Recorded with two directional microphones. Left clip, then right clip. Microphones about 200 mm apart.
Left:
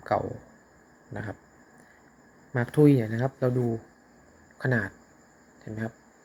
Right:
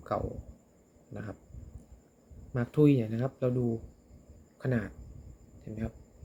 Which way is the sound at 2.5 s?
15° right (ahead or behind).